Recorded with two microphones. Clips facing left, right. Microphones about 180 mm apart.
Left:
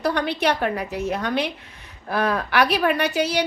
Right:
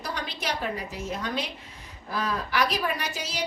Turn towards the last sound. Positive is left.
turn(degrees=65)  # may be behind; listen again after turning